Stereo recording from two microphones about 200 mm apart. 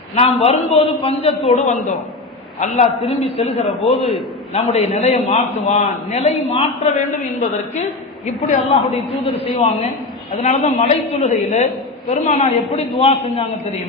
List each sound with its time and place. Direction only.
0.2 s a man's voice: 30° left (ahead or behind)
8.4 s a man's voice: 35° left (ahead or behind)
10.4 s a man's voice: 35° left (ahead or behind)